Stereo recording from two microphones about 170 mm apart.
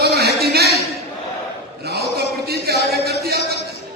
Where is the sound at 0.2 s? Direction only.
70° right (ahead or behind).